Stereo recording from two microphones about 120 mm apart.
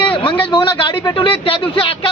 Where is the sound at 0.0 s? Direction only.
45° left (ahead or behind).